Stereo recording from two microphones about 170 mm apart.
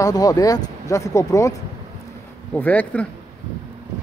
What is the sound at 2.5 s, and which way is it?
Speech, 10° left (ahead or behind).